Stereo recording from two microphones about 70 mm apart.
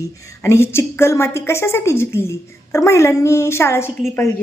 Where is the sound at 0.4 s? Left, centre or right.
Left.